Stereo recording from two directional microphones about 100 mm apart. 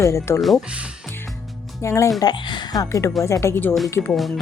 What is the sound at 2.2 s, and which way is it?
Speech, 50° left (ahead or behind).